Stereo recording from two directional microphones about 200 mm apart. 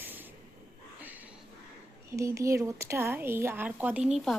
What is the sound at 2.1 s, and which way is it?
A woman's voice, 15° right (ahead or behind).